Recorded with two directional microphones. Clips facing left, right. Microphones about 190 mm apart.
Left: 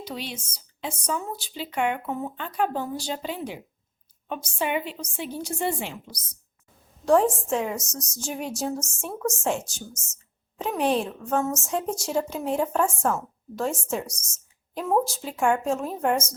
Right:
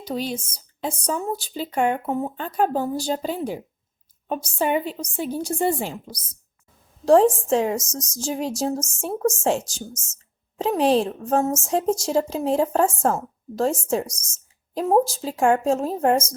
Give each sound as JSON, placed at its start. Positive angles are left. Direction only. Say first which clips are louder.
{"t": 0.1, "sound": "speech", "louder": "right 11 dB", "side_deg": -40}
{"t": 7.0, "sound": "speech", "louder": "right 5 dB", "side_deg": -30}
{"t": 7.8, "sound": "speech", "louder": "right 5 dB", "side_deg": -90}
{"t": 8.2, "sound": "speech", "louder": "right 5 dB", "side_deg": -35}
{"t": 9.6, "sound": "speech", "louder": "right 5 dB", "side_deg": -90}
{"t": 10.6, "sound": "speech", "louder": "right 5 dB", "side_deg": -35}
{"t": 11.9, "sound": "speech", "louder": "right 7 dB", "side_deg": -90}
{"t": 12.1, "sound": "speech", "louder": "right 3 dB", "side_deg": -35}
{"t": 14.1, "sound": "speech", "louder": "right 1 dB", "side_deg": -90}
{"t": 14.8, "sound": "speech", "louder": "right 5 dB", "side_deg": -35}